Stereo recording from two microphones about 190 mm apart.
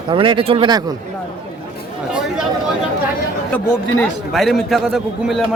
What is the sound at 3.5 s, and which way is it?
A man's voice, 10° left (ahead or behind).